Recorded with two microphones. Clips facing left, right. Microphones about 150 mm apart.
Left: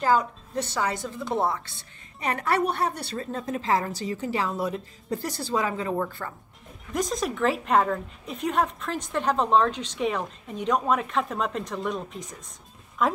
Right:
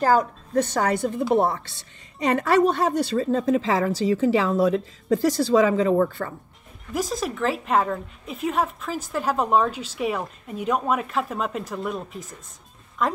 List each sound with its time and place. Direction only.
0.0 s a woman's voice: 45° right (ahead or behind)
1.3 s a woman's voice: 65° right (ahead or behind)
6.9 s a woman's voice: 5° right (ahead or behind)